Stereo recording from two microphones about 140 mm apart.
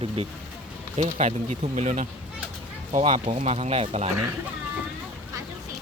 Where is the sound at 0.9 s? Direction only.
50° right (ahead or behind).